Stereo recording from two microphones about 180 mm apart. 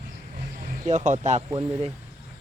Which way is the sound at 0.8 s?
40° right (ahead or behind).